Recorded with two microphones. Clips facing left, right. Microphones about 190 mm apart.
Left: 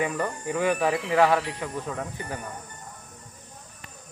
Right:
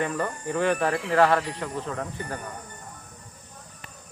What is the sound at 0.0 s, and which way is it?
Speech, 10° left (ahead or behind).